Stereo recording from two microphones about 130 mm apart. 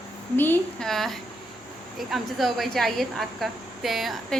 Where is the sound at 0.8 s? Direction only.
Centre (ahead or behind).